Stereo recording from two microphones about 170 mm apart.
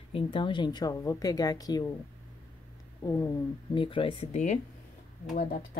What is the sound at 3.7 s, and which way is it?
Speech, 30° left (ahead or behind).